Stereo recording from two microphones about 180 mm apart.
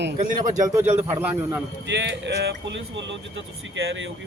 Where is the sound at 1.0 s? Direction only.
10° right (ahead or behind).